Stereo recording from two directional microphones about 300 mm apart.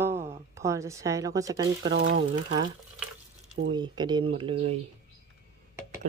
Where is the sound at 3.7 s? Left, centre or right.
Centre.